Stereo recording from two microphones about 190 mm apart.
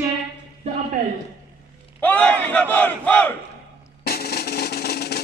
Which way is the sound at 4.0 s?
55° left (ahead or behind).